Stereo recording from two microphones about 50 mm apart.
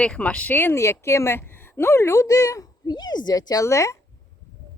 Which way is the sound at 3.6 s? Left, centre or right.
Left.